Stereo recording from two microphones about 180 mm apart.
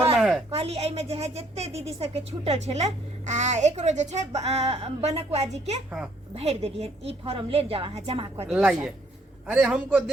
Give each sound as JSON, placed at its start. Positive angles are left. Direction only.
{"t": 0.2, "sound": "a sound", "side_deg": -5}
{"t": 0.5, "sound": "a woman's voice", "side_deg": -35}
{"t": 8.4, "sound": "a man's voice", "side_deg": -5}